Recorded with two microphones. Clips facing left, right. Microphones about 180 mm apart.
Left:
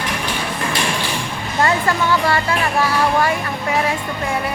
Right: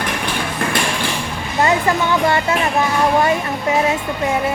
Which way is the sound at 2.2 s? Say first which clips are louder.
Right 2 dB; 20° right (ahead or behind).